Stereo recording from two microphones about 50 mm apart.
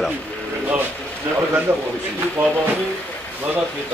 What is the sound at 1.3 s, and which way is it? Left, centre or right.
Speech, right.